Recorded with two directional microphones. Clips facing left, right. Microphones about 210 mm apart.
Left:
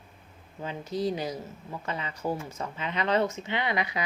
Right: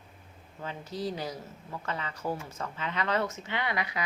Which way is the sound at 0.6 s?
15° left (ahead or behind).